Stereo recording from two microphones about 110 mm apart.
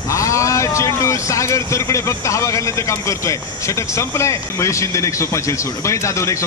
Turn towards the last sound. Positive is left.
turn(degrees=25)  # may be behind; listen again after turning